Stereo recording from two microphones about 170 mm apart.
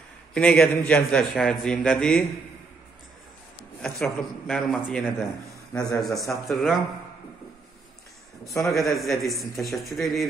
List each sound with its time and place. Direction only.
0.3 s a man's voice: 5° left (ahead or behind)
3.8 s a man's voice: 5° left (ahead or behind)
5.7 s a man's voice: 20° left (ahead or behind)
6.0 s a man's voice: centre (ahead or behind)
8.5 s a man's voice: centre (ahead or behind)